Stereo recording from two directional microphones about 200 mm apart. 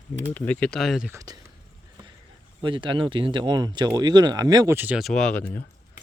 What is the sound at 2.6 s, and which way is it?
Speech, 25° right (ahead or behind).